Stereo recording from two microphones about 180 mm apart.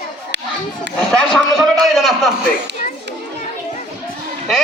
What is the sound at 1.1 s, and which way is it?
A man's voice, 5° left (ahead or behind).